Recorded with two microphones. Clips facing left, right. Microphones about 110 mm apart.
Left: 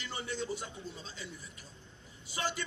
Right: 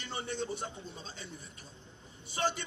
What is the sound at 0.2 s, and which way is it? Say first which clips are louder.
Speech: right 1 dB; 50° right (ahead or behind).